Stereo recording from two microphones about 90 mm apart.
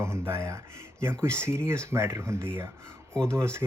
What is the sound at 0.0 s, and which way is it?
Speech, 30° right (ahead or behind).